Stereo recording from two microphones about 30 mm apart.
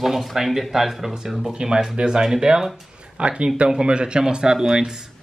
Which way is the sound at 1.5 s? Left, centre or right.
Right.